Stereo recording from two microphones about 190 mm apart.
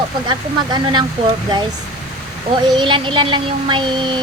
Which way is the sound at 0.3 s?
25° right (ahead or behind).